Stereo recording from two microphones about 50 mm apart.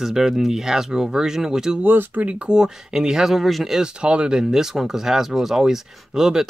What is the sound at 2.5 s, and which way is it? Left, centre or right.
Speech, centre.